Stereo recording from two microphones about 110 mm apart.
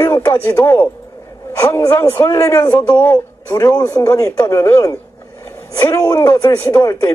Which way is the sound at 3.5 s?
35° left (ahead or behind).